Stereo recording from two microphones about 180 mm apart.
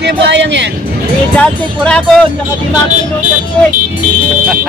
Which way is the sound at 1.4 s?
5° left (ahead or behind).